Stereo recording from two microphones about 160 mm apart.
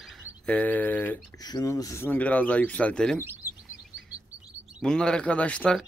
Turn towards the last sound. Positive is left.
turn(degrees=5)  # may be behind; listen again after turning